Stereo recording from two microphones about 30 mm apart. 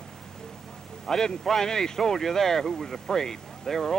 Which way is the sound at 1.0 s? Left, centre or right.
Centre.